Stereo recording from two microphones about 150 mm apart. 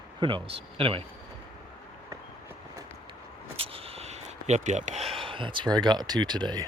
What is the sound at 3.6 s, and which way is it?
Speech, 40° right (ahead or behind).